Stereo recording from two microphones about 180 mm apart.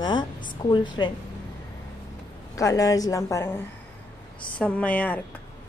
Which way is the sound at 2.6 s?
20° left (ahead or behind).